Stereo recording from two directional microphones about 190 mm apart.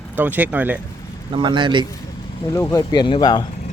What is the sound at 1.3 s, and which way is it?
Speech, 25° right (ahead or behind).